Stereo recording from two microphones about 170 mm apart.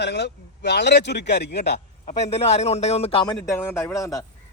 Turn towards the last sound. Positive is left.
turn(degrees=15)  # may be behind; listen again after turning